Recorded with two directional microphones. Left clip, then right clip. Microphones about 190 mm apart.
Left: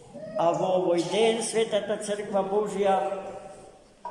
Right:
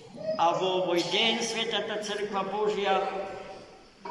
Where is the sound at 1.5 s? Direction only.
35° left (ahead or behind).